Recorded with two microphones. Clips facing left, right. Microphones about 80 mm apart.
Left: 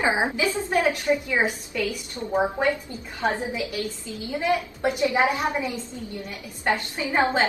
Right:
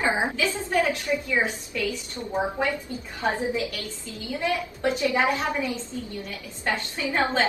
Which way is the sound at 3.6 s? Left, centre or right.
Left.